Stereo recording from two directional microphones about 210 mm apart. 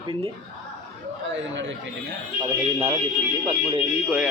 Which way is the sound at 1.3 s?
60° right (ahead or behind).